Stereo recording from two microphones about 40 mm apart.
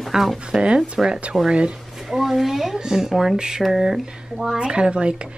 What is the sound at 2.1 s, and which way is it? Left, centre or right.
Speech, centre.